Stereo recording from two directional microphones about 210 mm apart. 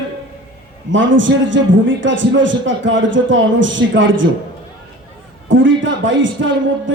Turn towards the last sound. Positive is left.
turn(degrees=-65)  # may be behind; listen again after turning